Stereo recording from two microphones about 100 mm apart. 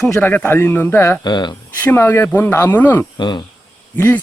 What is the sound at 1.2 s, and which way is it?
Speech, 45° left (ahead or behind).